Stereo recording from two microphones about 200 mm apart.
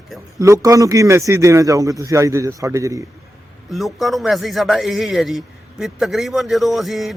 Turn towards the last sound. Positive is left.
turn(degrees=0)  # may be behind; listen again after turning